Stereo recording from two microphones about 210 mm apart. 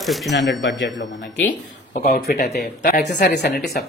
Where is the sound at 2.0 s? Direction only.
40° left (ahead or behind).